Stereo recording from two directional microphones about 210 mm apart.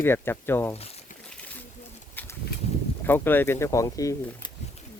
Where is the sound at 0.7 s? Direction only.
30° left (ahead or behind).